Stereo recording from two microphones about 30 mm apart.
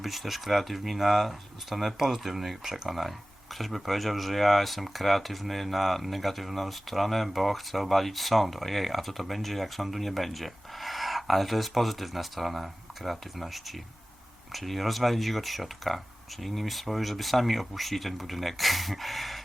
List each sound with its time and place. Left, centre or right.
0.0 s speech: centre
2.6 s speech: centre
2.9 s speech: centre